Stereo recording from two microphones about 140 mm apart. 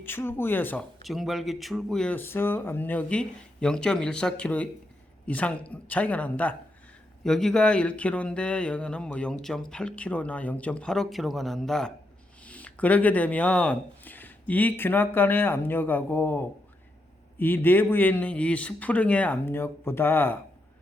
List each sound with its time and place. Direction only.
0.0 s speech: 15° left (ahead or behind)
1.0 s speech: centre (ahead or behind)